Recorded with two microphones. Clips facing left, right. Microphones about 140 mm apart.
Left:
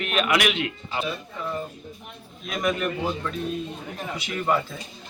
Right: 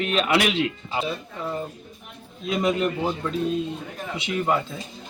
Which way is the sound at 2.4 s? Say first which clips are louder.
Right 3 dB; 25° right (ahead or behind).